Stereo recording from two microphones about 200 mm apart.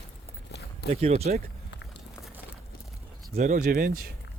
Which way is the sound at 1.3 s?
40° right (ahead or behind).